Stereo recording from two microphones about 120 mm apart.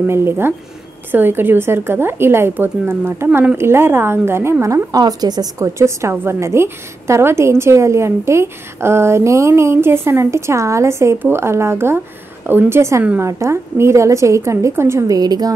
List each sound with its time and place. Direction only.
0.0 s a woman's voice: 20° right (ahead or behind)